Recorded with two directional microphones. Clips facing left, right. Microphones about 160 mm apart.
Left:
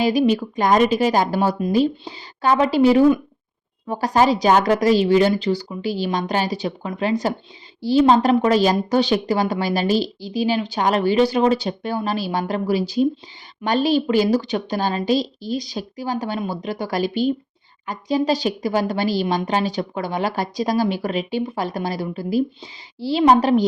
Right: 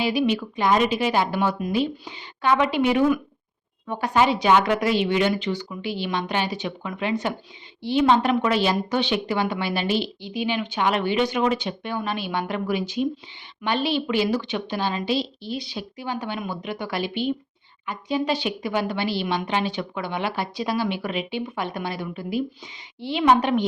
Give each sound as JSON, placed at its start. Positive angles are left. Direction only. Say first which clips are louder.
{"t": 0.0, "sound": "a woman's voice", "louder": "left 5 dB", "side_deg": 40}